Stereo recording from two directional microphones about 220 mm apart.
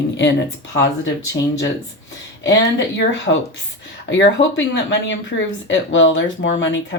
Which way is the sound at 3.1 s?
55° left (ahead or behind).